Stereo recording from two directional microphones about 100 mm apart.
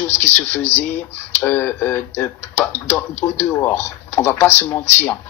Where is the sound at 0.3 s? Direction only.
15° left (ahead or behind).